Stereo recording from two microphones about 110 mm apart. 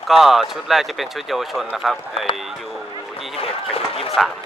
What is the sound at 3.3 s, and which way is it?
Speech, 60° left (ahead or behind).